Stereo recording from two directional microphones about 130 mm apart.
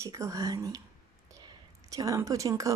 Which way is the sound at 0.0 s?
25° right (ahead or behind).